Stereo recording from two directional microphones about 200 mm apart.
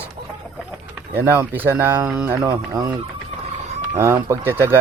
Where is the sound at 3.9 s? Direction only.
15° right (ahead or behind).